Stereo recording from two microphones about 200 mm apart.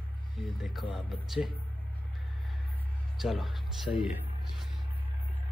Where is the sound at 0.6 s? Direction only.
Centre (ahead or behind).